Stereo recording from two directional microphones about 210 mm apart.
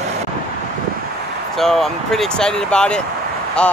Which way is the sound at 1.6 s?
Centre (ahead or behind).